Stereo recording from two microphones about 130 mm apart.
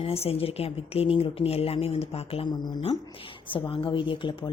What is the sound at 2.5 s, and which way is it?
A woman's voice, 35° left (ahead or behind).